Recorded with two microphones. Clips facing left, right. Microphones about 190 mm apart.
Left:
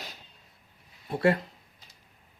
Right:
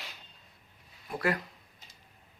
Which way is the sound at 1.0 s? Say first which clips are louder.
Left 7 dB; 30° left (ahead or behind).